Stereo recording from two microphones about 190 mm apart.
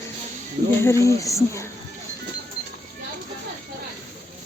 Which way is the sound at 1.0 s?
15° left (ahead or behind).